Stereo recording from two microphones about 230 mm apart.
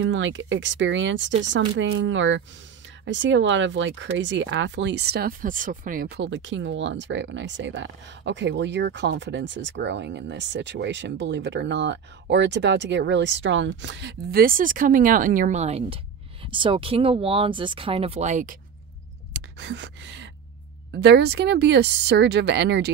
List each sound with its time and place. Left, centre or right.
0.0 s speech: right
19.3 s gasp: right
20.9 s speech: right